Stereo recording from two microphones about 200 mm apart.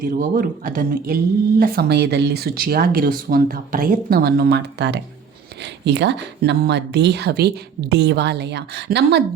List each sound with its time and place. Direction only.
0.0 s speech: 45° right (ahead or behind)